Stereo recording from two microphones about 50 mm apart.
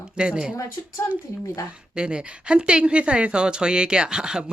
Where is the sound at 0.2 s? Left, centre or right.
Centre.